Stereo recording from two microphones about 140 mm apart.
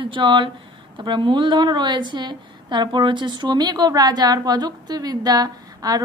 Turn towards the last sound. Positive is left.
turn(degrees=-30)  # may be behind; listen again after turning